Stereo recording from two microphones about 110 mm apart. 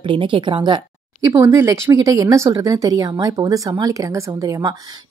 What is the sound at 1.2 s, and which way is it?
Speech, 30° right (ahead or behind).